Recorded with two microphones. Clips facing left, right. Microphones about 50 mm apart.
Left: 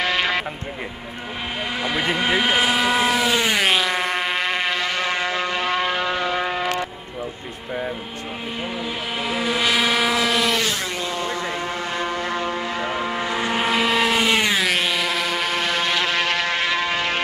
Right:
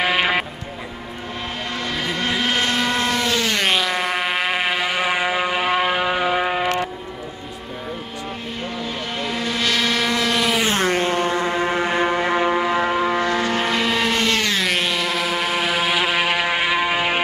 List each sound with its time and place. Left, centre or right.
0.0 s vehicle: centre
1.8 s vehicle: centre
3.6 s music: centre
9.2 s vehicle: centre
10.7 s vehicle: right; by 13.2 s centre
13.2 s vehicle: centre
14.6 s vehicle: centre